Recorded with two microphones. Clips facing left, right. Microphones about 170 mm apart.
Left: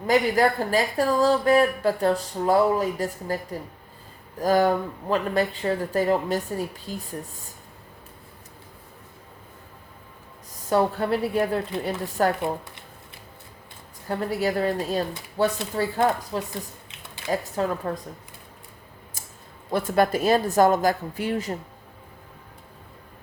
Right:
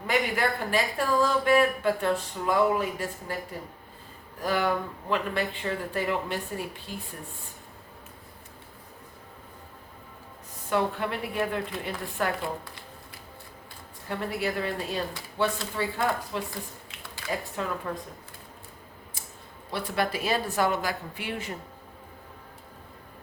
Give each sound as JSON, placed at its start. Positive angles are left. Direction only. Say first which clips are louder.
{"t": 0.1, "sound": "speech", "louder": "left 7 dB", "side_deg": 40}
{"t": 4.4, "sound": "speech", "louder": "left 6 dB", "side_deg": 40}
{"t": 10.7, "sound": "speech", "louder": "left 6 dB", "side_deg": 40}
{"t": 14.1, "sound": "speech", "louder": "left 5 dB", "side_deg": 40}
{"t": 16.9, "sound": "typing", "louder": "even", "side_deg": 20}
{"t": 17.3, "sound": "speech", "louder": "left 6 dB", "side_deg": 40}
{"t": 19.7, "sound": "a woman's voice", "louder": "left 7 dB", "side_deg": 45}